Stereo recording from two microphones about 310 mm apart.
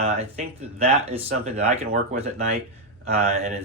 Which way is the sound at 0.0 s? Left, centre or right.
Right.